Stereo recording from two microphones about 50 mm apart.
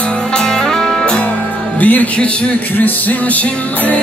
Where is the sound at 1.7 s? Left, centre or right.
Left.